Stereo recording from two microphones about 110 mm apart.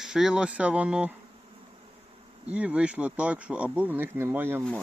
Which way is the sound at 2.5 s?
10° right (ahead or behind).